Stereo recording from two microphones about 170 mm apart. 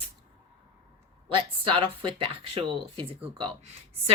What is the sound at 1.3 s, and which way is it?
Speech, 30° right (ahead or behind).